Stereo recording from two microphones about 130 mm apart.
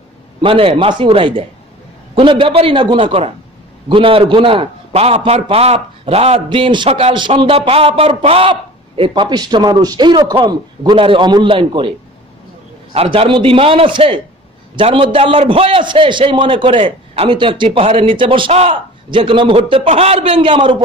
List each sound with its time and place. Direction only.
0.4 s a man's voice: 45° right (ahead or behind)
12.9 s a man's voice: 50° right (ahead or behind)